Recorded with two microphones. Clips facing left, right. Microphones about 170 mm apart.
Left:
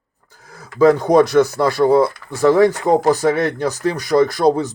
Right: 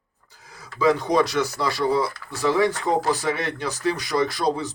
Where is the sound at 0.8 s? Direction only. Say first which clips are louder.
Left 8 dB; 50° left (ahead or behind).